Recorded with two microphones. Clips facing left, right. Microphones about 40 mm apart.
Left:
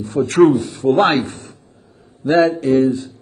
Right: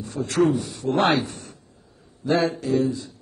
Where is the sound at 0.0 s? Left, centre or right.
Left.